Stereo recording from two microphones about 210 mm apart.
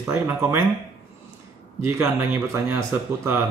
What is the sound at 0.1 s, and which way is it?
Speech, 10° right (ahead or behind).